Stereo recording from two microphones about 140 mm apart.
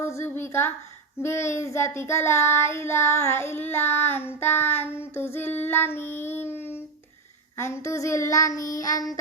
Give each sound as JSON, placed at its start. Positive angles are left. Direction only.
{"t": 0.0, "sound": "child singing", "side_deg": 20}